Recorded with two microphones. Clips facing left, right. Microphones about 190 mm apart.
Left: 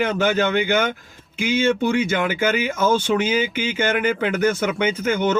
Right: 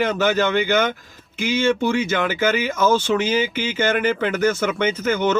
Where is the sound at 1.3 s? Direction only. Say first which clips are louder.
Even; 55° left (ahead or behind).